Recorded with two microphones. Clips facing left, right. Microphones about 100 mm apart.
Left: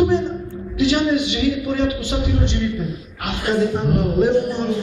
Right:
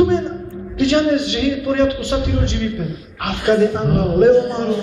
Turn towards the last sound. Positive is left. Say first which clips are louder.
# right 5 dB
turn(degrees=-55)  # may be behind; listen again after turning